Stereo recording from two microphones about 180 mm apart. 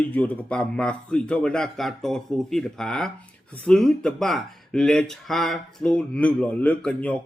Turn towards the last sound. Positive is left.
turn(degrees=5)  # may be behind; listen again after turning